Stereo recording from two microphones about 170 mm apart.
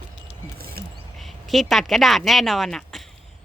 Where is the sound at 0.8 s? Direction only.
65° right (ahead or behind).